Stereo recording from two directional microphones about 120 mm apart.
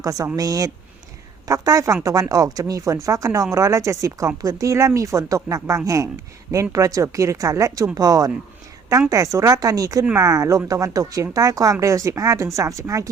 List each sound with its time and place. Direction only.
0.0 s speech: 30° right (ahead or behind)